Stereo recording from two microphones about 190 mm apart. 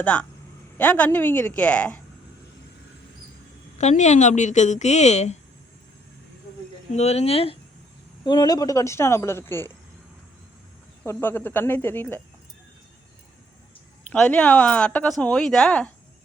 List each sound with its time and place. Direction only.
0.0 s speech: 5° left (ahead or behind)
3.8 s speech: 40° left (ahead or behind)
6.9 s speech: 35° left (ahead or behind); by 9.7 s 10° left (ahead or behind)
11.0 s speech: 10° left (ahead or behind)
14.1 s a woman's voice: 5° left (ahead or behind)